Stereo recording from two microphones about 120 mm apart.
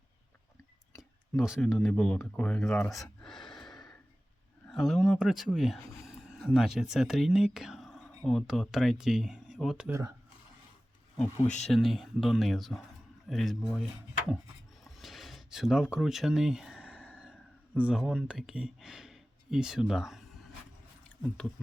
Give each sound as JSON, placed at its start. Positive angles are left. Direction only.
{"t": 1.4, "sound": "speech", "side_deg": -5}
{"t": 2.9, "sound": "gasp", "side_deg": 0}
{"t": 4.7, "sound": "speech", "side_deg": 0}
{"t": 11.2, "sound": "speech", "side_deg": 75}
{"t": 11.6, "sound": "speech", "side_deg": 0}
{"t": 14.8, "sound": "a sound", "side_deg": 0}
{"t": 21.2, "sound": "speech", "side_deg": 10}